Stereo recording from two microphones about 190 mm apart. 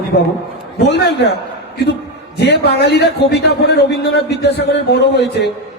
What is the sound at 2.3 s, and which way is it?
A man's voice, 60° left (ahead or behind).